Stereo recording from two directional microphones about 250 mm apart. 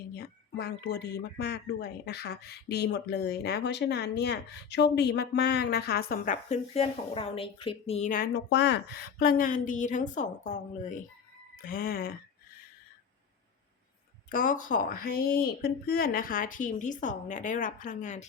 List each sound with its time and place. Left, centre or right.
0.1 s speech: left
14.3 s speech: left